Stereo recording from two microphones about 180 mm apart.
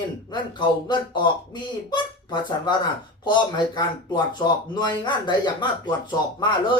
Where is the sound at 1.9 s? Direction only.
25° left (ahead or behind).